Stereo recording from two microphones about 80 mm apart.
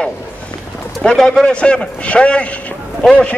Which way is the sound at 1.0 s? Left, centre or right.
Centre.